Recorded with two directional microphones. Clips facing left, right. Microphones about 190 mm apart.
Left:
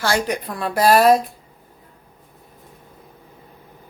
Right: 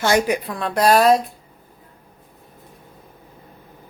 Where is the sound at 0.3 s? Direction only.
Centre (ahead or behind).